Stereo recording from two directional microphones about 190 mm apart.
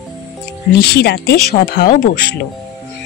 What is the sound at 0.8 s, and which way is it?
A woman's voice, 60° left (ahead or behind).